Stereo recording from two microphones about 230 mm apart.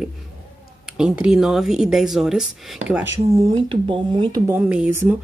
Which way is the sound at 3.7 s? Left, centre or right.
Right.